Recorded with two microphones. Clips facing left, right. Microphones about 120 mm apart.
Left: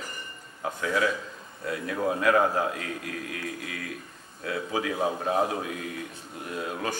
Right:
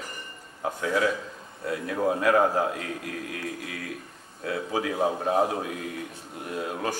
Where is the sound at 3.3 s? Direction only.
90° left.